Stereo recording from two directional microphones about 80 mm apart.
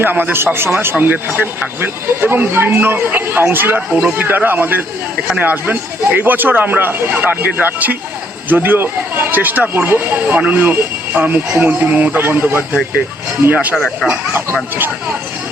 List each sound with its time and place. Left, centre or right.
0.0 s speech: right
13.7 s speech: centre